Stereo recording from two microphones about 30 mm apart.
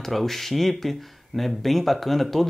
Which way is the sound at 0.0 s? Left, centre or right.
Centre.